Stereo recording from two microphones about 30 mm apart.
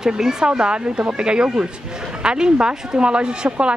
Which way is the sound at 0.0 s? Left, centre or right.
Centre.